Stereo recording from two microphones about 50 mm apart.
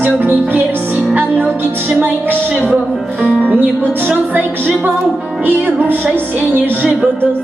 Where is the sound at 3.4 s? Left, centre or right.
Right.